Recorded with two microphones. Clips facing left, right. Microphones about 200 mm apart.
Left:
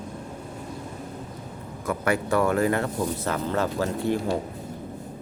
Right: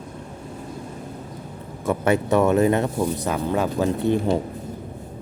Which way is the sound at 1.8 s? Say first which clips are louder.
Right 5 dB; 25° right (ahead or behind).